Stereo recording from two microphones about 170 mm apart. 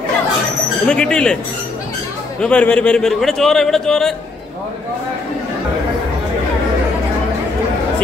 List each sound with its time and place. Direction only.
0.8 s a man's voice: 5° left (ahead or behind)
2.4 s a man's voice: 5° left (ahead or behind)